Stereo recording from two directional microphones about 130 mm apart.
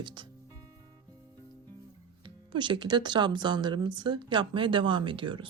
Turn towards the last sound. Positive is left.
turn(degrees=-40)  # may be behind; listen again after turning